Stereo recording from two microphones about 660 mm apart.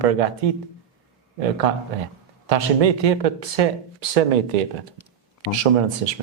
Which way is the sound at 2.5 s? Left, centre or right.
Right.